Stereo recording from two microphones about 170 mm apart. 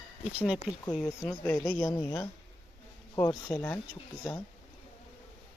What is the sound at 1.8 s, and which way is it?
Speech, 15° left (ahead or behind).